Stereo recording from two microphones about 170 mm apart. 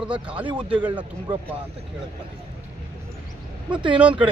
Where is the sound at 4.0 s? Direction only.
5° right (ahead or behind).